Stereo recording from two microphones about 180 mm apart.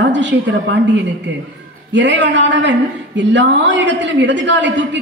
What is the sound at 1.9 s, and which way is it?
A man's voice, 90° right.